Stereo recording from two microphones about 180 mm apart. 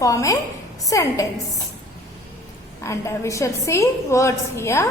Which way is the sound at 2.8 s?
15° left (ahead or behind).